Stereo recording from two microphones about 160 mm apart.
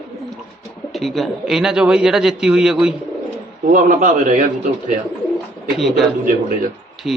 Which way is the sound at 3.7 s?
55° right (ahead or behind).